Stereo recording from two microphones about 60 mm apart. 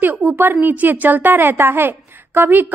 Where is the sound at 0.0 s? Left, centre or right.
Right.